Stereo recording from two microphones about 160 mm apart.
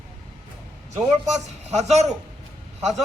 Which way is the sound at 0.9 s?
45° right (ahead or behind).